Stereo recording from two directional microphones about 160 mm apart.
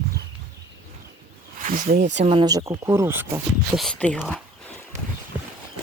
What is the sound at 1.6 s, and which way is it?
Speech, 55° right (ahead or behind).